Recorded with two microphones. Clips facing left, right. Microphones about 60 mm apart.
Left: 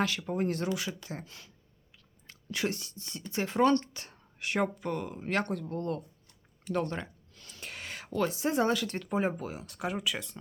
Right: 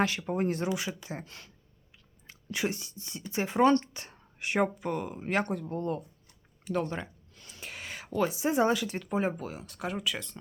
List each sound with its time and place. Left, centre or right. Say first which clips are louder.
0.0 s speech: right 2 dB; right
1.2 s speech: right 2 dB; right
2.2 s speech: right 1 dB; centre